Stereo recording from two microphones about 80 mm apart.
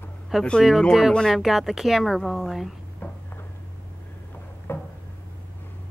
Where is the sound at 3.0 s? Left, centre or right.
Left.